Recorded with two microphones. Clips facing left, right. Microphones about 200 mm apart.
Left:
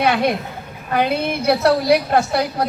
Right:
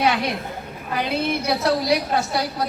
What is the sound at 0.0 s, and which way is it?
A woman's voice, 60° left (ahead or behind).